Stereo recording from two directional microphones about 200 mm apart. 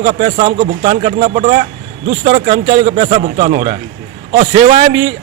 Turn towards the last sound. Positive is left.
turn(degrees=-35)  # may be behind; listen again after turning